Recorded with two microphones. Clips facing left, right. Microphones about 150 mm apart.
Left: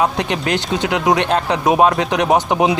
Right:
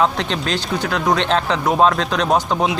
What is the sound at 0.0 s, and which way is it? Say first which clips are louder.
Speech: left 1 dB; 15° left (ahead or behind).